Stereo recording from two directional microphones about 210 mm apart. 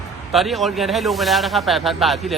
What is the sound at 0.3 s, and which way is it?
A man's voice, centre (ahead or behind).